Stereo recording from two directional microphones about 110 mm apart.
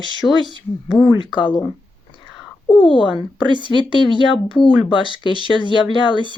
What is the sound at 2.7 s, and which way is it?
Speech, 50° left (ahead or behind).